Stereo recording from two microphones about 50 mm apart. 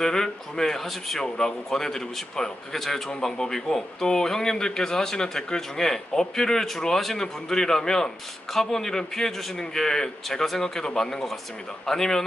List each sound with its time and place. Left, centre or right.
0.0 s a man's voice: centre